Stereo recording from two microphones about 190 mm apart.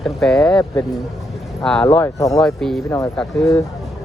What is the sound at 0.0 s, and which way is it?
Speech, centre (ahead or behind).